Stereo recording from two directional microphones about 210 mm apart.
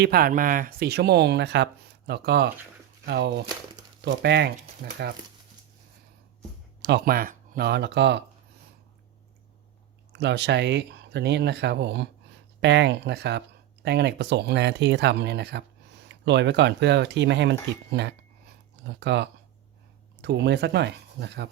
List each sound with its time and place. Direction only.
0.0 s speech: 45° right (ahead or behind)
6.8 s speech: 50° right (ahead or behind)
10.1 s speech: 55° right (ahead or behind)